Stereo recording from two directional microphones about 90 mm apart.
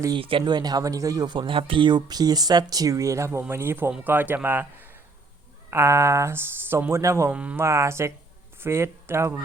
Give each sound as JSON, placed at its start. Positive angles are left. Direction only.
{"t": 0.2, "sound": "speech", "side_deg": -75}
{"t": 7.3, "sound": "speech", "side_deg": -15}
{"t": 7.6, "sound": "speech", "side_deg": -30}